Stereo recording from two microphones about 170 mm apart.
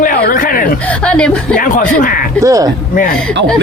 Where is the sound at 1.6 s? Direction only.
50° left (ahead or behind).